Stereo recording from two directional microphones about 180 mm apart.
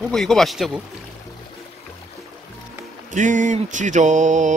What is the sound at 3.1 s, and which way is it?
Mantra, 45° right (ahead or behind).